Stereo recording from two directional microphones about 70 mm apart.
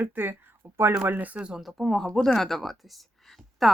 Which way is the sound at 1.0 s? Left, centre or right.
Right.